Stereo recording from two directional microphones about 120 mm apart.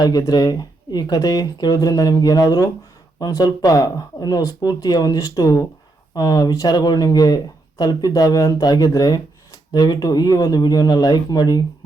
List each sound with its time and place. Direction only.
0.0 s speech: 35° left (ahead or behind)